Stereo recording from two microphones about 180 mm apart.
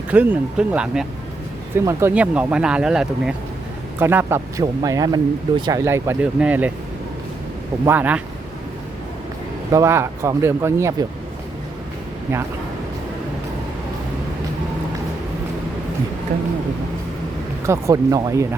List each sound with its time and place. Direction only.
0.1 s speech: 10° right (ahead or behind)
1.7 s speech: 15° right (ahead or behind)
7.9 s speech: 10° right (ahead or behind)
9.7 s speech: 15° right (ahead or behind)
17.7 s speech: 15° right (ahead or behind)